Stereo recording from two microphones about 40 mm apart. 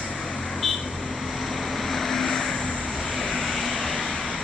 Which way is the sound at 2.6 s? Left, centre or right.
Left.